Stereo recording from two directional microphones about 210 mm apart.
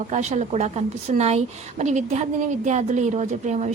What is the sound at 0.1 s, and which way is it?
A woman's voice, 35° right (ahead or behind).